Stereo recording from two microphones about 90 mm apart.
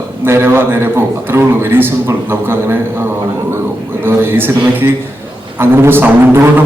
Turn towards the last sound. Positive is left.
turn(degrees=-25)  # may be behind; listen again after turning